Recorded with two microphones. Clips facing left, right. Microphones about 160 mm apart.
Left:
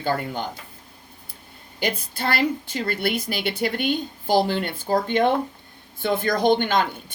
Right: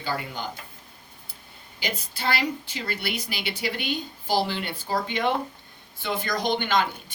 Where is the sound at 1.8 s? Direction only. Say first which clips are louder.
Left 5 dB; 50° left (ahead or behind).